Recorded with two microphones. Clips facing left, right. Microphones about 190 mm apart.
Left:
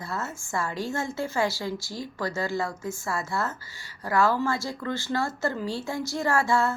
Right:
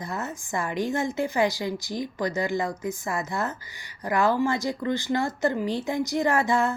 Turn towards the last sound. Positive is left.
turn(degrees=-20)  # may be behind; listen again after turning